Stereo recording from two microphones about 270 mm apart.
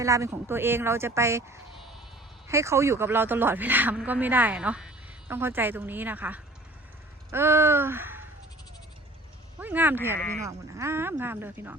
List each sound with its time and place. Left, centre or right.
0.0 s speech: centre
7.3 s a sound: centre
9.6 s speech: centre